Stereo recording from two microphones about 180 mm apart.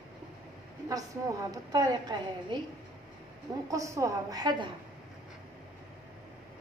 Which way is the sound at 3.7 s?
15° right (ahead or behind).